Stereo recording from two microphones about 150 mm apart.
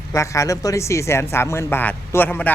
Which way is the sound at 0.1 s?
20° left (ahead or behind).